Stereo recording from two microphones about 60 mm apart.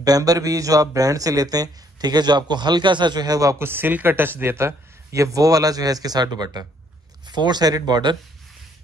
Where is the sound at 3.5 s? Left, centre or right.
Right.